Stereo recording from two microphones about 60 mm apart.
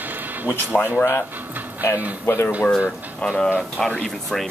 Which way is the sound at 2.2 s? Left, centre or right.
Left.